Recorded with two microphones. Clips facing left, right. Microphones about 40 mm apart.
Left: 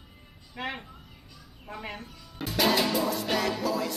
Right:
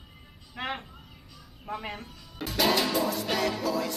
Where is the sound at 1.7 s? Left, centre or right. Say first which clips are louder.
Right 3 dB; centre.